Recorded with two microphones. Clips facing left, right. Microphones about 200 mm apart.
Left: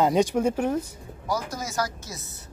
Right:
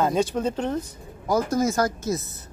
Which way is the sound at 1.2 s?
50° right (ahead or behind).